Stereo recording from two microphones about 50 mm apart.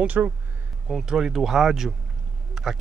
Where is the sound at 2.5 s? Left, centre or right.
Centre.